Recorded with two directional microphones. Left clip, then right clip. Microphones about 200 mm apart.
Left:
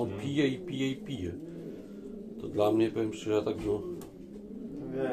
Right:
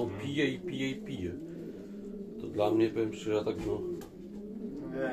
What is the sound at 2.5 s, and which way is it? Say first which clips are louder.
Speech: left 1 dB; 25° left (ahead or behind).